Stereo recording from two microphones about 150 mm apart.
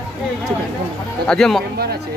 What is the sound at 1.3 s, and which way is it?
Speech, 5° left (ahead or behind).